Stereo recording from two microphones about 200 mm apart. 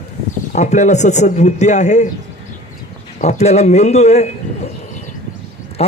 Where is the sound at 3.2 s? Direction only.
35° left (ahead or behind).